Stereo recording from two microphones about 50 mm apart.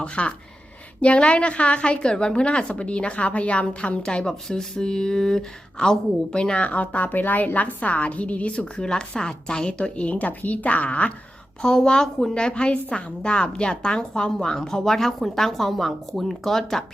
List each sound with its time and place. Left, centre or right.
0.0 s speech: left
11.6 s a woman's voice: centre